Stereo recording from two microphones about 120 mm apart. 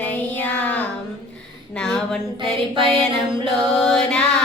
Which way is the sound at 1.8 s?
5° left (ahead or behind).